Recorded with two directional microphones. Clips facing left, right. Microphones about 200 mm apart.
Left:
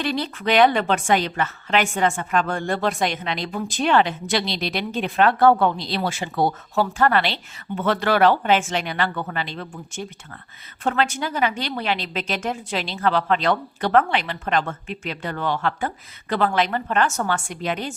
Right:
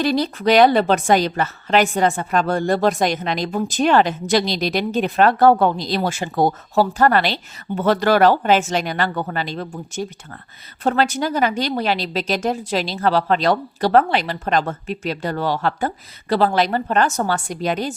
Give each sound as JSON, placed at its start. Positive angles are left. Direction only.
{"t": 0.0, "sound": "a woman's voice", "side_deg": -40}